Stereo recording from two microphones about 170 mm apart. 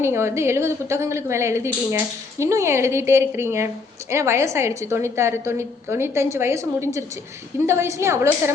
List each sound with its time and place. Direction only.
0.0 s a woman's voice: 15° right (ahead or behind)